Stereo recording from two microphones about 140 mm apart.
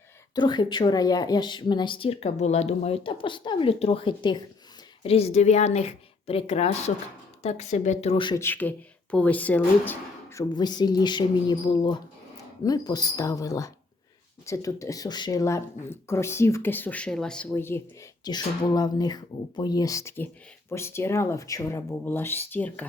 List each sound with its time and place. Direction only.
0.3 s speech: 30° left (ahead or behind)
5.0 s speech: 45° left (ahead or behind)
8.1 s speech: 35° left (ahead or behind)
8.4 s speech: 15° left (ahead or behind)
10.5 s speech: 30° left (ahead or behind)
18.3 s speech: 30° left (ahead or behind); by 22.9 s 10° left (ahead or behind)